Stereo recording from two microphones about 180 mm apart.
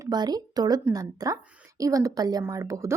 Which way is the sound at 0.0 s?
20° right (ahead or behind).